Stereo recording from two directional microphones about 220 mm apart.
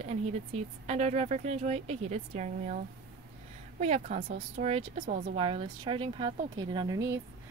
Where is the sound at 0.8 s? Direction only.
30° right (ahead or behind).